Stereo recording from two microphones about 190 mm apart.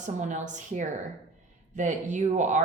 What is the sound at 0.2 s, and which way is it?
Speech, 40° right (ahead or behind).